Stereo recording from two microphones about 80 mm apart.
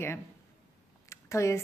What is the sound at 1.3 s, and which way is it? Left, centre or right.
Speech, left.